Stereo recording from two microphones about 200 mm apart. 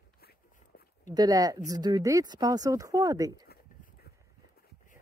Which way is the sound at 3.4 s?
50° left (ahead or behind).